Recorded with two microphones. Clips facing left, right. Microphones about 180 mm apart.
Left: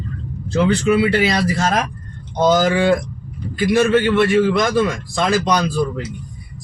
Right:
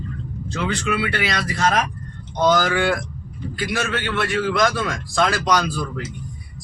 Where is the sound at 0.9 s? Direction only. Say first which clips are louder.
Left 8 dB; 25° left (ahead or behind).